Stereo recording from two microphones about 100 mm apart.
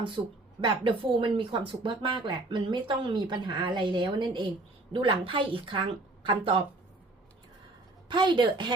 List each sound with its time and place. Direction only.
0.6 s speech: 55° right (ahead or behind)
3.2 s speech: 45° right (ahead or behind)
8.0 s speech: 50° right (ahead or behind)